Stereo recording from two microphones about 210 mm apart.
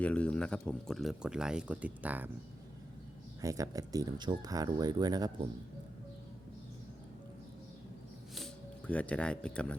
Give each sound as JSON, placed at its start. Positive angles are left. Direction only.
{"t": 0.0, "sound": "speech", "side_deg": 5}
{"t": 3.4, "sound": "speech", "side_deg": -15}
{"t": 8.9, "sound": "speech", "side_deg": 5}